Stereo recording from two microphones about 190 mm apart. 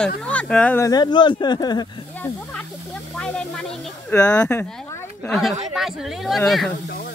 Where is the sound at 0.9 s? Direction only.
20° left (ahead or behind).